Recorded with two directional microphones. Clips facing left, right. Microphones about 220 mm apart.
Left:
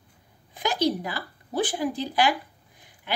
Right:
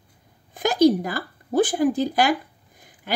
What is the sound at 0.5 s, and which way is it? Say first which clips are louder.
Speech: right 8 dB; 45° right (ahead or behind).